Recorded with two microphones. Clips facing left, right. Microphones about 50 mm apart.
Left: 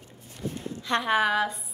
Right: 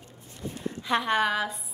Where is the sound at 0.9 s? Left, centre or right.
Centre.